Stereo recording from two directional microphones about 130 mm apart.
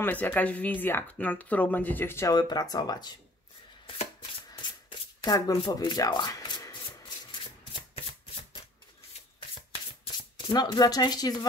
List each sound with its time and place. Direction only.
0.0 s speech: 10° left (ahead or behind)
2.3 s speech: 30° left (ahead or behind)
4.5 s rub: 35° left (ahead or behind)
5.2 s speech: 25° left (ahead or behind)
10.4 s speech: 30° left (ahead or behind)